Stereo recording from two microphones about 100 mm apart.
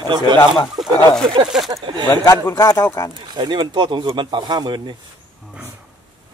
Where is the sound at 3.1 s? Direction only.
45° right (ahead or behind).